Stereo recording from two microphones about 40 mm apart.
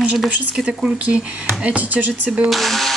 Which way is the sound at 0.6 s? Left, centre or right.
Right.